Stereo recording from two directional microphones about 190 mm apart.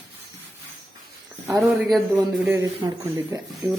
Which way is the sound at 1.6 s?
Centre (ahead or behind).